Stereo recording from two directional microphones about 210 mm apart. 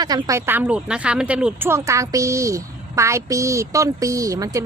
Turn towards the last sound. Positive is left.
turn(degrees=-15)  # may be behind; listen again after turning